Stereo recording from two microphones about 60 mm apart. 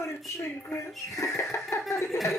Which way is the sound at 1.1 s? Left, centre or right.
Left.